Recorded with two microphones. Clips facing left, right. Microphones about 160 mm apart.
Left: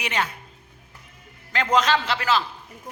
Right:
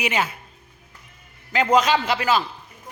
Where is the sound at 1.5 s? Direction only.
10° right (ahead or behind).